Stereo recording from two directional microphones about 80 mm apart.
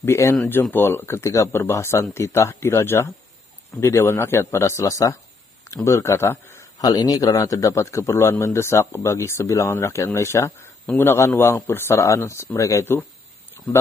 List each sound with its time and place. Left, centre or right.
0.0 s a man's voice: left
6.8 s a man's voice: left